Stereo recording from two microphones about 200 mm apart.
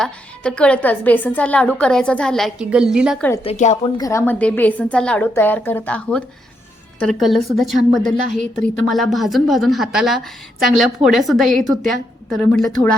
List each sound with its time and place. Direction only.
0.0 s a woman's voice: 5° left (ahead or behind)
3.4 s a woman's voice: 35° left (ahead or behind)
3.9 s a woman's voice: 15° left (ahead or behind)